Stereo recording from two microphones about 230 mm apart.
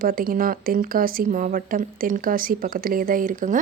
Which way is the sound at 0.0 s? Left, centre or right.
Right.